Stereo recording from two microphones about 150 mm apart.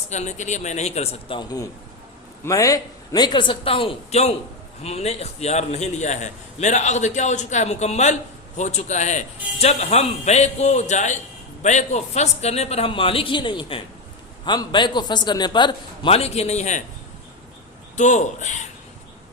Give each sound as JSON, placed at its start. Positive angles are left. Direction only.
{"t": 0.1, "sound": "a man's voice", "side_deg": 50}
{"t": 1.4, "sound": "a man's voice", "side_deg": 25}
{"t": 17.9, "sound": "a man's voice", "side_deg": 50}